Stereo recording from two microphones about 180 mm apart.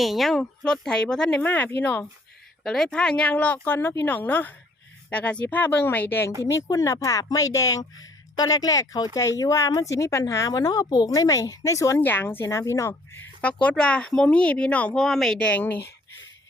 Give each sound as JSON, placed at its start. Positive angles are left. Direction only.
{"t": 0.0, "sound": "speech", "side_deg": 0}